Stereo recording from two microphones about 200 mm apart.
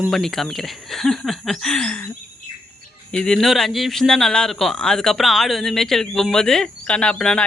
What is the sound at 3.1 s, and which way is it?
Speech, 5° left (ahead or behind).